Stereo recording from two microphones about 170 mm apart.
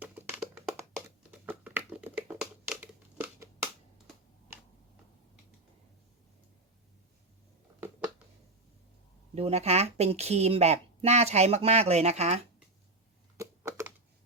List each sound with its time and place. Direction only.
0.0 s a sound: 10° right (ahead or behind)
9.3 s speech: 40° right (ahead or behind)
13.3 s typing: 15° right (ahead or behind)